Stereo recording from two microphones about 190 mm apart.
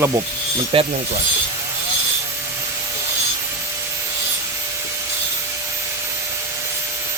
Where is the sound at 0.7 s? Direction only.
30° right (ahead or behind).